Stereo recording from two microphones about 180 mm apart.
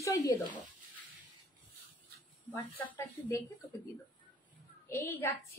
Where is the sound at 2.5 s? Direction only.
30° left (ahead or behind).